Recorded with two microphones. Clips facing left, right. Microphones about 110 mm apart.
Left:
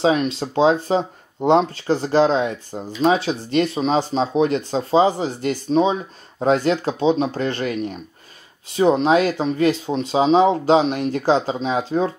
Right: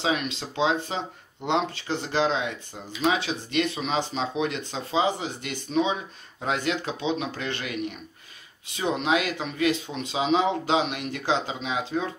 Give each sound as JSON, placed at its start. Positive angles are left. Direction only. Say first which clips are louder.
{"t": 0.0, "sound": "speech", "louder": "left 9 dB", "side_deg": 40}